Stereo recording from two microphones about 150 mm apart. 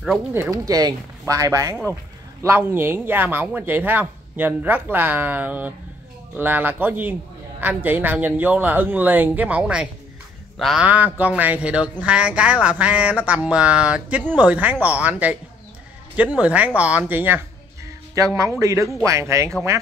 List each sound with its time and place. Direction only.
0.3 s speech: 20° right (ahead or behind)